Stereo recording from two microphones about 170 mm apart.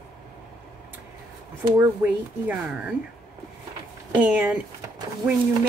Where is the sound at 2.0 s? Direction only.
10° right (ahead or behind).